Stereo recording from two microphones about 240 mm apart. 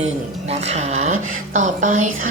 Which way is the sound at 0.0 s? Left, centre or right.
Right.